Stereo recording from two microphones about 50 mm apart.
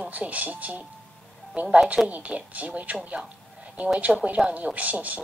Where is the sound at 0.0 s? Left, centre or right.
Right.